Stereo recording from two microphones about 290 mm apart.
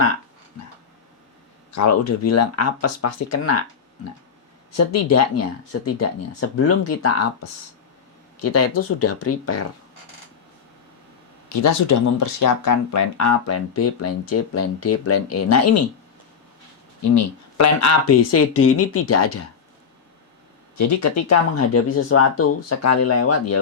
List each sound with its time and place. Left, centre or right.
1.7 s speech: left
4.8 s speech: left
8.4 s speech: left
11.6 s speech: left
17.0 s speech: left
20.7 s speech: left